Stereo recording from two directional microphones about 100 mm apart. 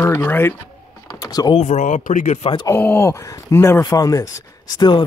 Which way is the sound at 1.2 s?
40° left (ahead or behind).